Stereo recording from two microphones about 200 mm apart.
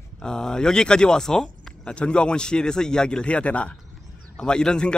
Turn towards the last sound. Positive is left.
turn(degrees=5)  # may be behind; listen again after turning